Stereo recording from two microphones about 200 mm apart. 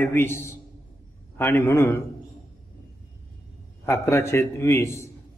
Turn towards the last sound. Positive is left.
turn(degrees=15)  # may be behind; listen again after turning